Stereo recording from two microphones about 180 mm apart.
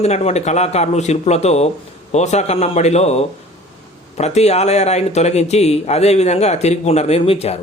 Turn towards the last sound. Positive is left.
turn(degrees=35)  # may be behind; listen again after turning